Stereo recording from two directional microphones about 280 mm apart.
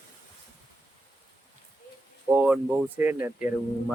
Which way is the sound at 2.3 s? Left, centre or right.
Centre.